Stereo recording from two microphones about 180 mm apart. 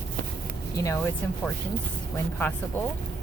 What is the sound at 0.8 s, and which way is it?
Speech, 15° left (ahead or behind).